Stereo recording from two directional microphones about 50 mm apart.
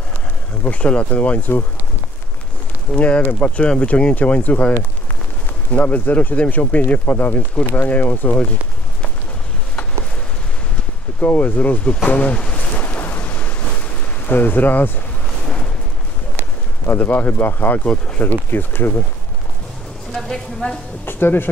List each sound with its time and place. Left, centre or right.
0.7 s speech: left
2.9 s speech: left
11.1 s speech: left
12.8 s a sound: left
14.2 s speech: left
16.8 s speech: left
17.8 s speech: centre
18.2 s speech: left
20.6 s speech: left
21.0 s speech: left